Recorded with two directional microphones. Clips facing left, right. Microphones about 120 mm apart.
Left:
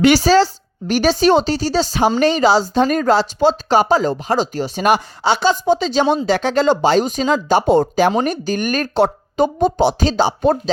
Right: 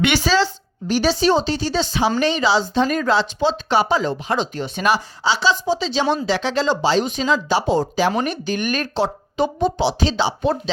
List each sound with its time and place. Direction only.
0.0 s speech: 35° left (ahead or behind); by 1.5 s 55° left (ahead or behind)
1.5 s speech: 40° left (ahead or behind)
4.9 s speech: 55° left (ahead or behind)
8.2 s speech: 40° left (ahead or behind)